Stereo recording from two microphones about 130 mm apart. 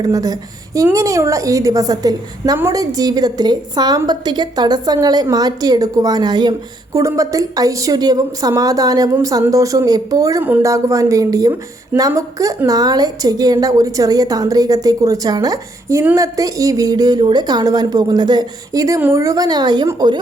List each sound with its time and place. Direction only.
0.0 s a woman's voice: 30° right (ahead or behind)
10.4 s speech: 15° right (ahead or behind)
10.7 s a woman's voice: 25° right (ahead or behind)